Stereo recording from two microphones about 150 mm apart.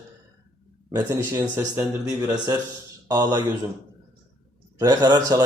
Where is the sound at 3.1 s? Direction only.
25° right (ahead or behind).